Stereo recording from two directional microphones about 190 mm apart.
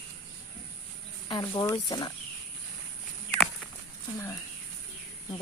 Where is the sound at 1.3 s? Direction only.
20° left (ahead or behind).